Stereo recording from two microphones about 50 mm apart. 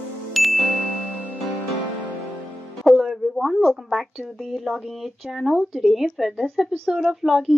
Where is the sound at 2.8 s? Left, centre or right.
Centre.